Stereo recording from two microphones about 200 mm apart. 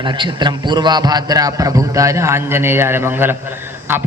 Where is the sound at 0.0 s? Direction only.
20° right (ahead or behind).